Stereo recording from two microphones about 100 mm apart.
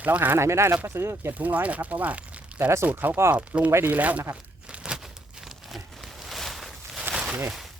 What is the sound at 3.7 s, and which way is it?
Speech, 20° right (ahead or behind).